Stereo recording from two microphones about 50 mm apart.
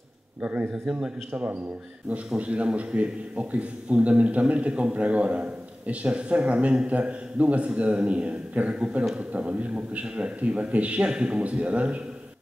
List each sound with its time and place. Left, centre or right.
0.4 s a man's voice: right